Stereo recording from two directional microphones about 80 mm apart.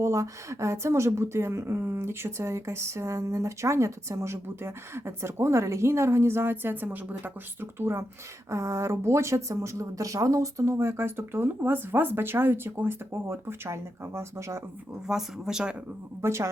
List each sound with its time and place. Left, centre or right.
0.0 s speech: right
15.0 s speech: centre
16.2 s speech: right